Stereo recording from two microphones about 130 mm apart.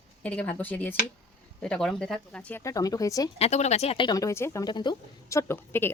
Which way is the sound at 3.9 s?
30° left (ahead or behind).